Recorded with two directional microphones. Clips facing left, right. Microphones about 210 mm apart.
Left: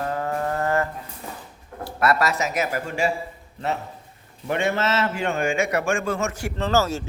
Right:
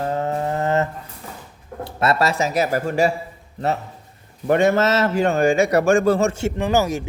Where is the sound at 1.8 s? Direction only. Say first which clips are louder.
Right 2 dB; 25° right (ahead or behind).